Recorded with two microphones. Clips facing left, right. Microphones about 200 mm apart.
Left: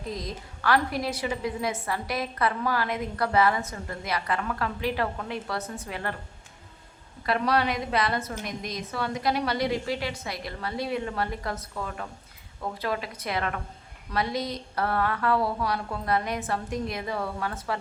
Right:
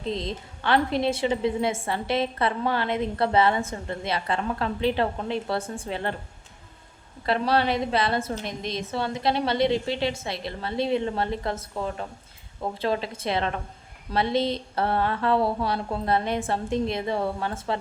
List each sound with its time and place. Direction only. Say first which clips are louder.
0.0 s a woman's voice: right 5 dB; 25° right (ahead or behind)
7.3 s a woman's voice: right 2 dB; 30° right (ahead or behind)